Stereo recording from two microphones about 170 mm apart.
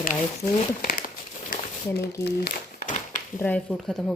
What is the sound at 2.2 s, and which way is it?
Speech, 75° left (ahead or behind).